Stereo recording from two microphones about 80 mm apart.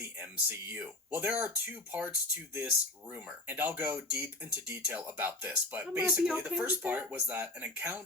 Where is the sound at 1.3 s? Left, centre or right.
Right.